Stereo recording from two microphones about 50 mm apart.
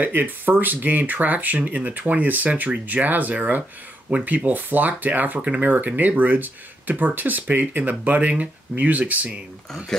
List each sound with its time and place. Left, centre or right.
0.0 s speech: right